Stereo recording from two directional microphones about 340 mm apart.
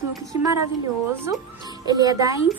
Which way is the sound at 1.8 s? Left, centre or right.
Centre.